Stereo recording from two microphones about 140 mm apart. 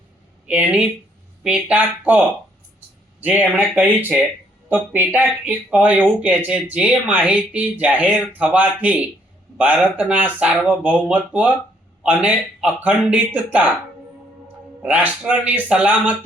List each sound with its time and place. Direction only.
0.4 s speech: 10° right (ahead or behind)